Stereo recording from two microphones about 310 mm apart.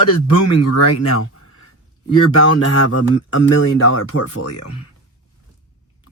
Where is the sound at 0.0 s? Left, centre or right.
Left.